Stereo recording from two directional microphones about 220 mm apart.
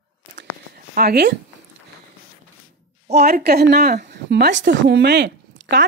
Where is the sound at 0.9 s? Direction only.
45° right (ahead or behind).